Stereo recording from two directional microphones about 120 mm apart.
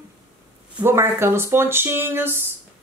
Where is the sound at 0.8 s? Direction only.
20° right (ahead or behind).